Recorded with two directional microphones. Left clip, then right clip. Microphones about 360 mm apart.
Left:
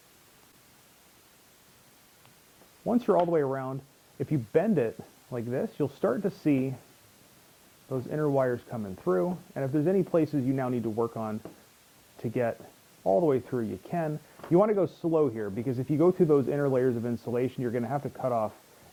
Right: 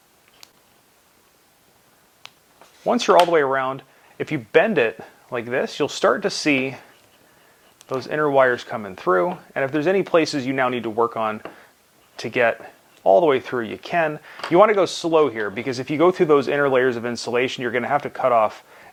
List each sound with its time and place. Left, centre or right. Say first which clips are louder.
2.8 s speech: right 10 dB; centre
7.9 s speech: right 8 dB; centre
13.0 s speech: right 10 dB; centre
13.2 s speech: right 8 dB; centre